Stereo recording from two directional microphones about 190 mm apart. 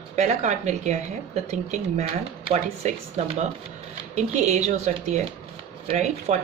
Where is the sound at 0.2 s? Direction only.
40° right (ahead or behind).